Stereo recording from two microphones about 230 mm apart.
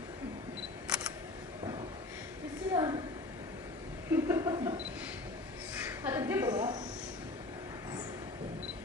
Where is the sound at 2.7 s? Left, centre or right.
Centre.